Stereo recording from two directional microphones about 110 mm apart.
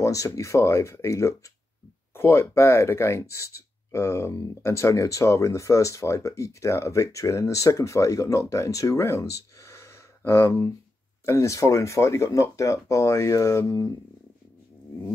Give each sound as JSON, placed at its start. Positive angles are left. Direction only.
{"t": 0.0, "sound": "speech", "side_deg": 30}